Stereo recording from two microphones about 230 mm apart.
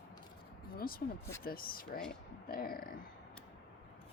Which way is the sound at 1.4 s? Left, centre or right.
Left.